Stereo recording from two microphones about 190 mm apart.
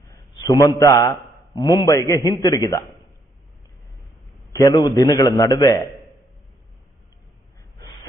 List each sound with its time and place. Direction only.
0.5 s a man's voice: 20° left (ahead or behind)
4.5 s a man's voice: 15° left (ahead or behind)